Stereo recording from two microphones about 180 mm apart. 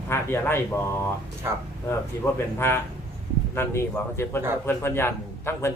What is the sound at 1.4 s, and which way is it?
Speech, 15° right (ahead or behind).